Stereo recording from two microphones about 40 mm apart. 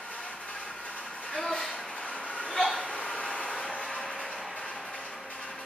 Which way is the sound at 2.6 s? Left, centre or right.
Centre.